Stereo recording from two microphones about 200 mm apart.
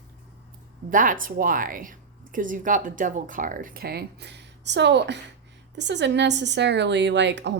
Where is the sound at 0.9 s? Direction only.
40° right (ahead or behind).